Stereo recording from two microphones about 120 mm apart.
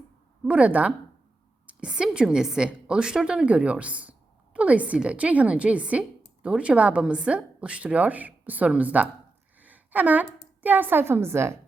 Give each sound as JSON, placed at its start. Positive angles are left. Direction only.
{"t": 0.4, "sound": "a woman's voice", "side_deg": -10}